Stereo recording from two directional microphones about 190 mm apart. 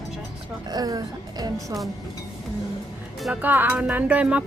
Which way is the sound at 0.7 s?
20° right (ahead or behind).